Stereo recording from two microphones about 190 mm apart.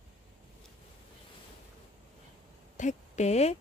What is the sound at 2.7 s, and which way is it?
Speech, 40° left (ahead or behind).